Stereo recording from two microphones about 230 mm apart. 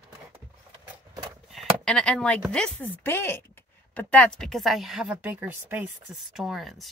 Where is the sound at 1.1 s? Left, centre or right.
Centre.